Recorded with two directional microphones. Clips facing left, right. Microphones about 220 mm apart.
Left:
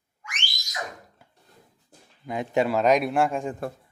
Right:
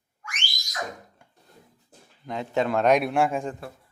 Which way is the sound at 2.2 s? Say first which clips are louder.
Left 2 dB; 10° left (ahead or behind).